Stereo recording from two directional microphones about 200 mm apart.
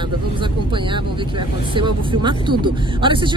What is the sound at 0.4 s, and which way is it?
Speech, 25° right (ahead or behind).